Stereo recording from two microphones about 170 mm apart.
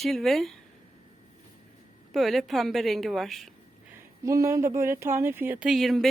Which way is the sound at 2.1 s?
Centre (ahead or behind).